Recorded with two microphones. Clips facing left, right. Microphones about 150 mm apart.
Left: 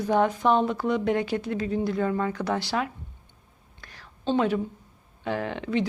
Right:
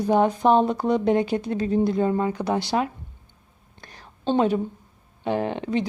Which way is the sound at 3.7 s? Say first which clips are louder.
Right 3 dB; 25° right (ahead or behind).